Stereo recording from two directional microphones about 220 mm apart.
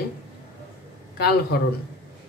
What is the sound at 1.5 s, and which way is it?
Speech, 45° left (ahead or behind).